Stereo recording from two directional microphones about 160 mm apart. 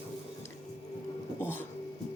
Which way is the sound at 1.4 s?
15° left (ahead or behind).